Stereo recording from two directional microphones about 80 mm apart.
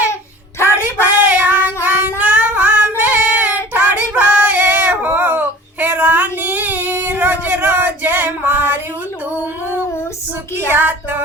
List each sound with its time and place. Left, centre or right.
0.8 s child singing: right
10.7 s music: right